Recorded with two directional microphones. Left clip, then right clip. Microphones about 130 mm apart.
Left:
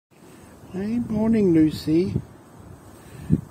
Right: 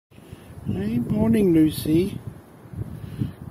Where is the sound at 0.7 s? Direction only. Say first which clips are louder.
Even; 15° left (ahead or behind).